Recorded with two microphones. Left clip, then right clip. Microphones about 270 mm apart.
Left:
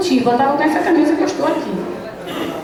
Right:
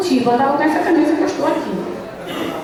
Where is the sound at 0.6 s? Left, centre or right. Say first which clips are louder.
Even; centre.